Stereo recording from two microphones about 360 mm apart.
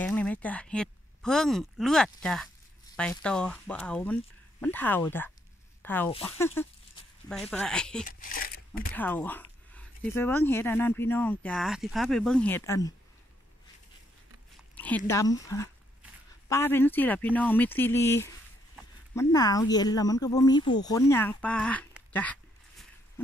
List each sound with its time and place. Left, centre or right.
0.0 s speech: centre
8.0 s a sound: left
8.9 s speech: centre
14.8 s speech: centre